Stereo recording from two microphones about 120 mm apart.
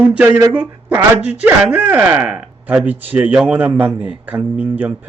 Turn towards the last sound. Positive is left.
turn(degrees=-15)  # may be behind; listen again after turning